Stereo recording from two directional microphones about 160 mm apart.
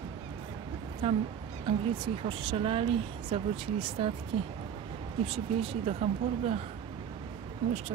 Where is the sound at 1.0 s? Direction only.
35° right (ahead or behind).